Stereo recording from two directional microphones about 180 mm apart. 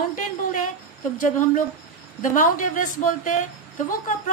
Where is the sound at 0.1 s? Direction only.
45° left (ahead or behind).